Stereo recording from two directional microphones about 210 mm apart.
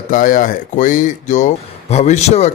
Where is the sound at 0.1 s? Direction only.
40° left (ahead or behind).